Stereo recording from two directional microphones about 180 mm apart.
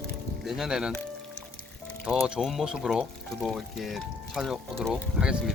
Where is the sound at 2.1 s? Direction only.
Centre (ahead or behind).